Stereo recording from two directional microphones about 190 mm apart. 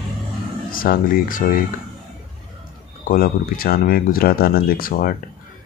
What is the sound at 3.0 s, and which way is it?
Speech, 50° left (ahead or behind).